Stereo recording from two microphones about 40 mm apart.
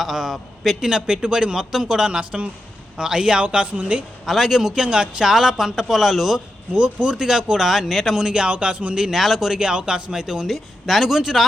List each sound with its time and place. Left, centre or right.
0.0 s a man's voice: centre
0.9 s speech: centre
1.5 s speech: centre; by 4.1 s right
4.3 s speech: centre
4.7 s speech: right
5.3 s speech: centre
6.7 s speech: right
7.5 s speech: centre
8.3 s speech: right
9.0 s speech: centre
9.5 s speech: right
10.4 s speech: centre